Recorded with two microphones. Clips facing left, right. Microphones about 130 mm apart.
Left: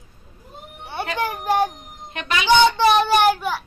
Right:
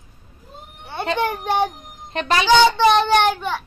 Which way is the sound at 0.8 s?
15° left (ahead or behind).